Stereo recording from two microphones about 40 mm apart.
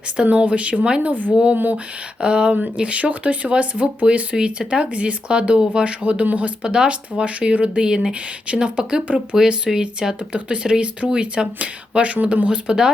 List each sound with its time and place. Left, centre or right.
0.2 s speech: right
1.0 s a woman's voice: right
2.2 s speech: right
3.5 s speech: right
6.6 s speech: right
12.7 s speech: centre